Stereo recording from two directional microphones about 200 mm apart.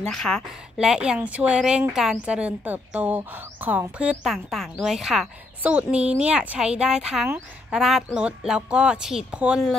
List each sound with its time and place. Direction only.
0.0 s a woman's voice: 5° left (ahead or behind)